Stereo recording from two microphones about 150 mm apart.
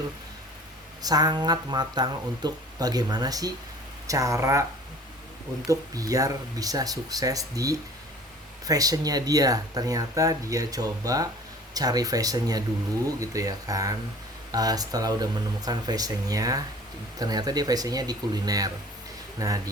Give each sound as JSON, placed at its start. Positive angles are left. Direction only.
{"t": 1.0, "sound": "speech", "side_deg": -25}
{"t": 5.6, "sound": "speech", "side_deg": -25}